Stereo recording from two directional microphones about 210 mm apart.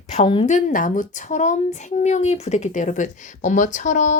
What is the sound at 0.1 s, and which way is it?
A woman's voice, 30° left (ahead or behind).